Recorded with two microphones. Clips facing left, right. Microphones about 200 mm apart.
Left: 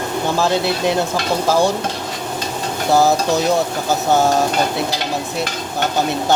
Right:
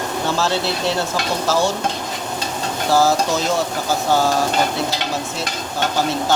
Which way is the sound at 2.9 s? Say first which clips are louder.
Left 2 dB; 20° left (ahead or behind).